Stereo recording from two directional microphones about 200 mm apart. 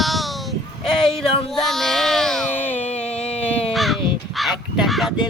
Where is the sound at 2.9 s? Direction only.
35° left (ahead or behind).